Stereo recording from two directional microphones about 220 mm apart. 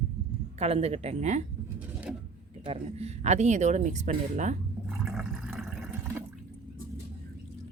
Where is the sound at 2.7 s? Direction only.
30° right (ahead or behind).